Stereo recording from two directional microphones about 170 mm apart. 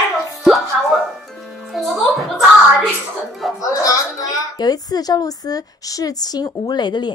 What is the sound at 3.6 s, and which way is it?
A woman's voice, 20° left (ahead or behind).